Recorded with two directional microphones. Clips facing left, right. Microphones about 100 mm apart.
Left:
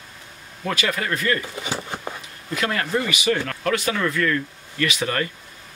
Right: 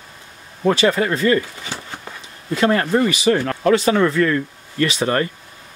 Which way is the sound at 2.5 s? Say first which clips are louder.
Right 7 dB; 30° right (ahead or behind).